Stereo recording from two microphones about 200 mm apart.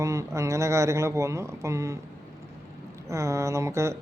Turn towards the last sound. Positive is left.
turn(degrees=-15)  # may be behind; listen again after turning